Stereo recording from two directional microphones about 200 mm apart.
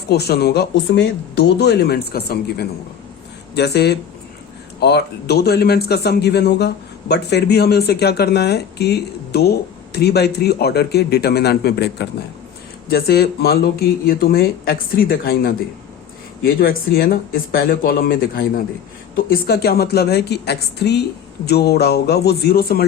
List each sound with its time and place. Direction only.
0.1 s a man's voice: 55° left (ahead or behind)